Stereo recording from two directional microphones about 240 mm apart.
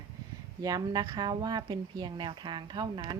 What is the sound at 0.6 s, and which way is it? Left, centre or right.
Speech, centre.